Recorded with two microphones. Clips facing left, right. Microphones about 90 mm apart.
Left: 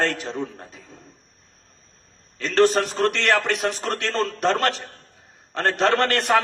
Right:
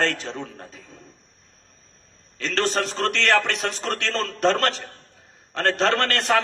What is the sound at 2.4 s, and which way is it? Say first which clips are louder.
A man's voice: left 6 dB; 10° left (ahead or behind).